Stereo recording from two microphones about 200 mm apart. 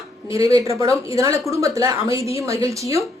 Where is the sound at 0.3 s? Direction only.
15° right (ahead or behind).